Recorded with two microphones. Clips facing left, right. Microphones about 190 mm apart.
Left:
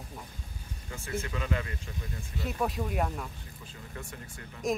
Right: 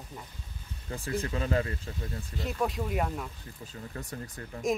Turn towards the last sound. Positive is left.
turn(degrees=-40)  # may be behind; listen again after turning